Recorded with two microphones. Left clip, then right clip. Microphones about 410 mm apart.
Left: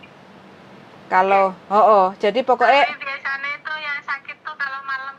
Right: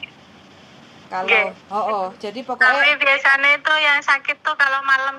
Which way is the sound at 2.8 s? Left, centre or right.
Right.